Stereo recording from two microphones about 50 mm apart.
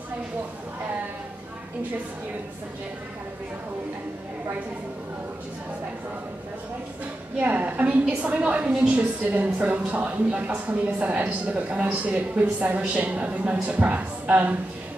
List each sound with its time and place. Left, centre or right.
7.3 s a woman's voice: right